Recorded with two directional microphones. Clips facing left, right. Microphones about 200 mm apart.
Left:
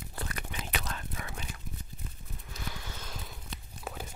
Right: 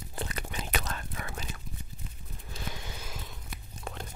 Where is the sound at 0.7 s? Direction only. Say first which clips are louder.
Right 2 dB; 50° right (ahead or behind).